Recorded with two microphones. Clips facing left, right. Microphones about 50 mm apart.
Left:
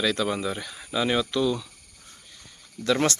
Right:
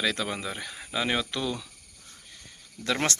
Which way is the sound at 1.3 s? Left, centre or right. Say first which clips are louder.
Left 7 dB; right.